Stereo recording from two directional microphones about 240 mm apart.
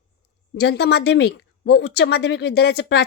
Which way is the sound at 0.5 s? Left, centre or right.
Left.